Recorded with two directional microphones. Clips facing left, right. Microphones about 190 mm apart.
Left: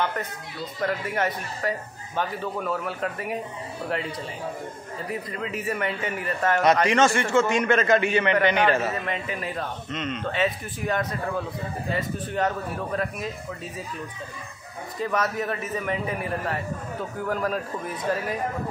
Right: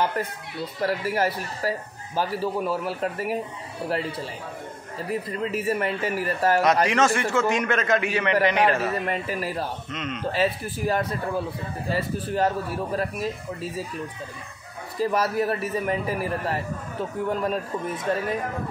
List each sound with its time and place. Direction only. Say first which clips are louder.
0.0 s a man's voice: right 2 dB; 30° right (ahead or behind)
5.4 s a man's voice: right 3 dB; 30° right (ahead or behind)
6.6 s a man's voice: left 5 dB; centre (ahead or behind)
8.9 s a man's voice: right 3 dB; 35° right (ahead or behind)
9.8 s a man's voice: left 1 dB; centre (ahead or behind)
10.2 s a man's voice: right 3 dB; 35° right (ahead or behind)
15.0 s a man's voice: right 3 dB; 30° right (ahead or behind)